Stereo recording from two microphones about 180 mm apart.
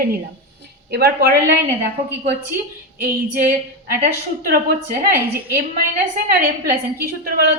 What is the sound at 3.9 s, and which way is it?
A woman's voice, 55° right (ahead or behind).